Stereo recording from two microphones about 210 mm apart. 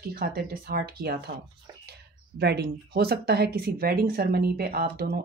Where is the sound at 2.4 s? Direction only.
50° right (ahead or behind).